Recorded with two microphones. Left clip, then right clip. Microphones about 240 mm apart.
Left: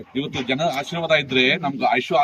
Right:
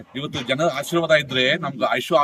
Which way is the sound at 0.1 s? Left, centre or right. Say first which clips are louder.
Even; centre.